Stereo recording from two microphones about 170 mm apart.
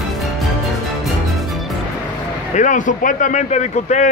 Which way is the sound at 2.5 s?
45° left (ahead or behind).